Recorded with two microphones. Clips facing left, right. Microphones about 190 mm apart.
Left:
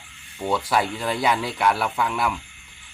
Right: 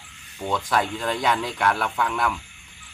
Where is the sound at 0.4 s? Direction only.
5° left (ahead or behind).